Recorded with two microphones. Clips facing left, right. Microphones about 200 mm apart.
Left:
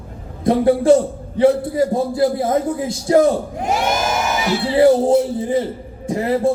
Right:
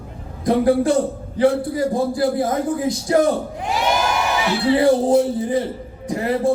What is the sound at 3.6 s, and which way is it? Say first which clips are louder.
Crowd: left 2 dB; 45° left (ahead or behind).